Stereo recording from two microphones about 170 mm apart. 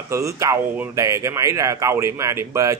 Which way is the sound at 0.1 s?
15° right (ahead or behind).